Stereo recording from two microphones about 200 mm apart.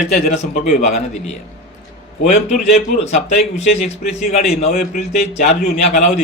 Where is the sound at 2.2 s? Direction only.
35° left (ahead or behind).